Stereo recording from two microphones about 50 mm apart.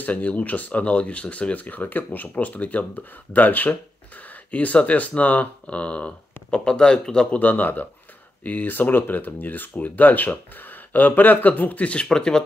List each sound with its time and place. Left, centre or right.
0.0 s speech: left
7.2 s speech: left; by 12.4 s centre